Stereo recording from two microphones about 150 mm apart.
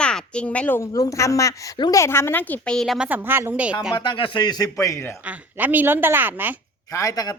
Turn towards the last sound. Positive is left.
turn(degrees=25)  # may be behind; listen again after turning